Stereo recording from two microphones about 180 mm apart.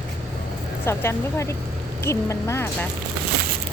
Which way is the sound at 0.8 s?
15° left (ahead or behind).